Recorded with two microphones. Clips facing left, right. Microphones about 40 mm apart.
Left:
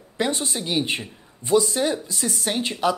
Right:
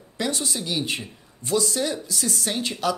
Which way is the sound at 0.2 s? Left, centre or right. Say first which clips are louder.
Left 2 dB; left.